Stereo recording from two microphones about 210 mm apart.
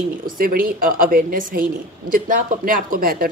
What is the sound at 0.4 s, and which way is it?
A woman's voice, 40° right (ahead or behind).